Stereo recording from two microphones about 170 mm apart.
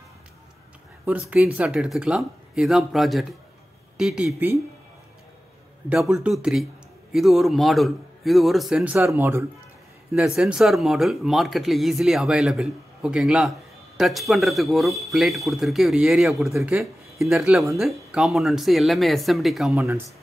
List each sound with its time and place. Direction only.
1.0 s speech: 10° right (ahead or behind)
5.9 s speech: centre (ahead or behind)